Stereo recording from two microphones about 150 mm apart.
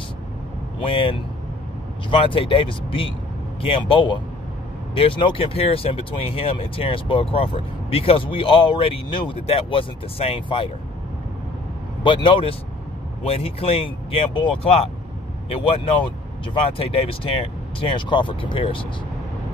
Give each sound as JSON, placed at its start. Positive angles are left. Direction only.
{"t": 0.7, "sound": "speech", "side_deg": 35}
{"t": 12.0, "sound": "speech", "side_deg": 35}